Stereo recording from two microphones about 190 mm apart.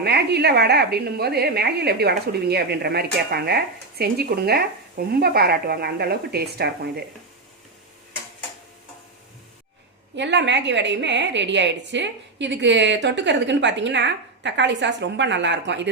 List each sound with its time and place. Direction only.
0.0 s a woman's voice: 60° right (ahead or behind)
10.2 s a woman's voice: 70° right (ahead or behind)